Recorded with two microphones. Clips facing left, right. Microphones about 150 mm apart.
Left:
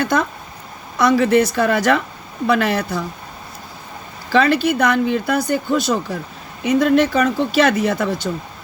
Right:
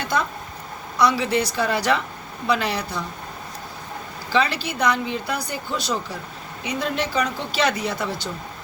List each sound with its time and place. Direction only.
0.0 s speech: 50° left (ahead or behind)
4.3 s speech: 55° left (ahead or behind)